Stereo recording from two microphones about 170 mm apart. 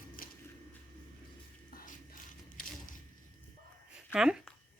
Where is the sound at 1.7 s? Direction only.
55° left (ahead or behind).